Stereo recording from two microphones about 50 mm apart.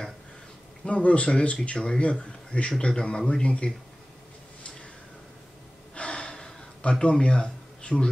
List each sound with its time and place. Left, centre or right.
0.8 s speech: left
5.9 s gasp: centre
7.8 s a sound: centre